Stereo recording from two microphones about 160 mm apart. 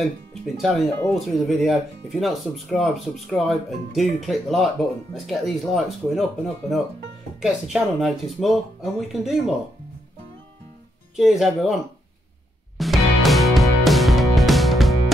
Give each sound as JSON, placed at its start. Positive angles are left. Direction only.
{"t": 0.0, "sound": "speech", "side_deg": 0}
{"t": 0.9, "sound": "speech", "side_deg": 15}
{"t": 1.4, "sound": "speech", "side_deg": 0}
{"t": 11.1, "sound": "speech", "side_deg": 0}
{"t": 12.7, "sound": "music", "side_deg": 0}